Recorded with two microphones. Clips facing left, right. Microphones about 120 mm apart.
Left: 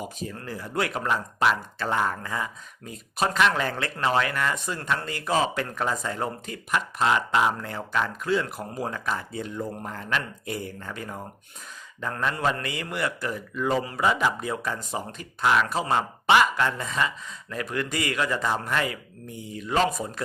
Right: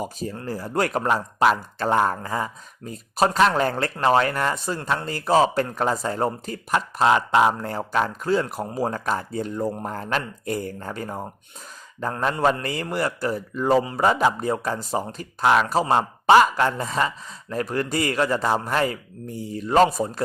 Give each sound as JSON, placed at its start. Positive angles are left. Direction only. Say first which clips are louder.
{"t": 0.0, "sound": "speech", "louder": "right 5 dB", "side_deg": -40}